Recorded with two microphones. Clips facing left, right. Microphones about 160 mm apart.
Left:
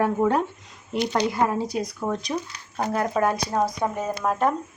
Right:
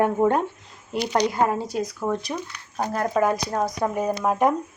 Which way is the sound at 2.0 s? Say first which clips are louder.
Right 1 dB; 5° right (ahead or behind).